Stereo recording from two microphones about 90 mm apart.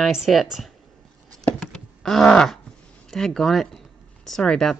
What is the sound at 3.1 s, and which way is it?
Speech, 5° left (ahead or behind).